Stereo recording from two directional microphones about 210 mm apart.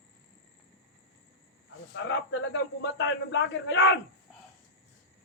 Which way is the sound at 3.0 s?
60° left (ahead or behind).